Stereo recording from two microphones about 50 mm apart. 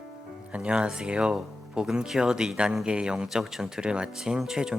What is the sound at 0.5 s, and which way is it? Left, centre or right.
Speech, right.